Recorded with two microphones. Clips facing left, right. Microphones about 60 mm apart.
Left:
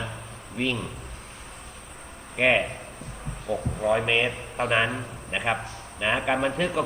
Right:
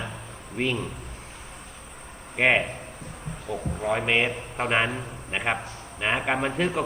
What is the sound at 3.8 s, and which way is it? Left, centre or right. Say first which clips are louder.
A man's voice: left 1 dB; centre.